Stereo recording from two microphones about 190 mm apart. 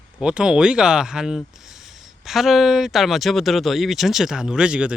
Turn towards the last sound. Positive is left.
turn(degrees=-5)  # may be behind; listen again after turning